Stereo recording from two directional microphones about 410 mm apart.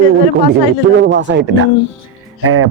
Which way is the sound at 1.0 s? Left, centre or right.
Right.